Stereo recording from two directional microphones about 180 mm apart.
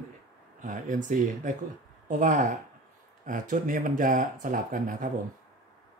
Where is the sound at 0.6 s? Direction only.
45° right (ahead or behind).